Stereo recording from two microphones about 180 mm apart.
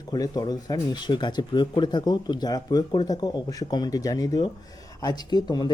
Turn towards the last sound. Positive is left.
turn(degrees=25)  # may be behind; listen again after turning